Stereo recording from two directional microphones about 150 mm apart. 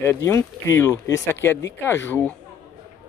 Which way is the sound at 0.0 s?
15° left (ahead or behind).